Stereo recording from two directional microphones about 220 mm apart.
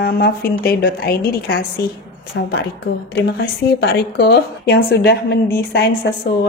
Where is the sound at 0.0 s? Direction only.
45° left (ahead or behind).